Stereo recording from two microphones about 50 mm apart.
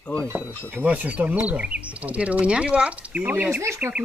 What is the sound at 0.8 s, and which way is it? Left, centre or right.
Speech, right.